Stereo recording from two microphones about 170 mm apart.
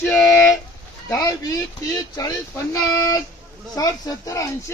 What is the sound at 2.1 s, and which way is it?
Speech, 20° left (ahead or behind).